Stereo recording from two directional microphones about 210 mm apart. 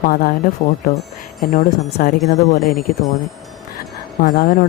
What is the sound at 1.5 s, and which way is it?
Speech, 35° left (ahead or behind).